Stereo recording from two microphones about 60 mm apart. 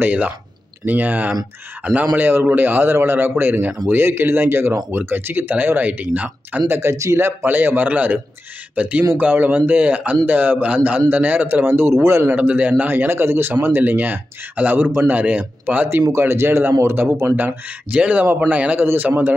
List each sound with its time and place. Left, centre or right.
0.0 s a man's voice: right
6.7 s speech: right
7.5 s a man's voice: right
12.4 s speech: right
16.1 s speech: right
17.9 s a man's voice: right